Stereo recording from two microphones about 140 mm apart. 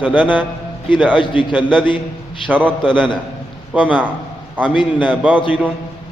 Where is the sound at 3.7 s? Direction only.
10° right (ahead or behind).